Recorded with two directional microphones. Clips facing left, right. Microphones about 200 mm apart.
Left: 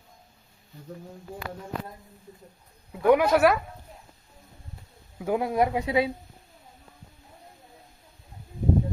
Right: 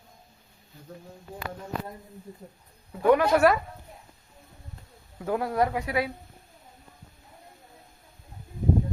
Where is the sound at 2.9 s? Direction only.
10° left (ahead or behind).